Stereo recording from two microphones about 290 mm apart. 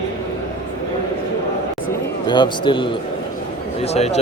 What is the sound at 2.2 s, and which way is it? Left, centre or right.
A man's voice, centre.